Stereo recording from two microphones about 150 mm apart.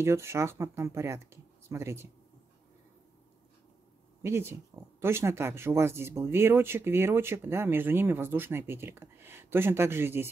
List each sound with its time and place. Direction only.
0.0 s speech: 15° right (ahead or behind)
4.2 s speech: 15° right (ahead or behind)